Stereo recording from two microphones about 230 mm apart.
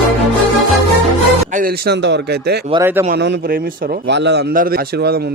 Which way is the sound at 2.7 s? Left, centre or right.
Centre.